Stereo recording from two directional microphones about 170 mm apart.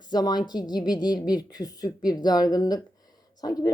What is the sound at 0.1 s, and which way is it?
Speech, 25° left (ahead or behind).